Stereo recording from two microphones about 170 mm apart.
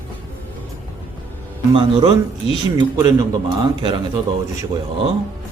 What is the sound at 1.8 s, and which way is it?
A man's voice, 30° right (ahead or behind).